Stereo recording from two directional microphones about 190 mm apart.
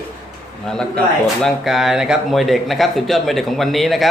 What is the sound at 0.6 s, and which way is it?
Speech, 5° left (ahead or behind).